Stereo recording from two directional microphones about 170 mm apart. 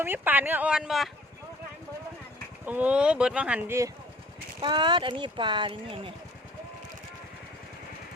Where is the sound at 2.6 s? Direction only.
10° right (ahead or behind).